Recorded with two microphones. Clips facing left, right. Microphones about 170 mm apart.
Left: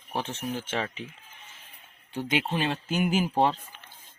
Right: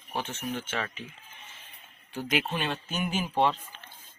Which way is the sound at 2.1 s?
30° left (ahead or behind).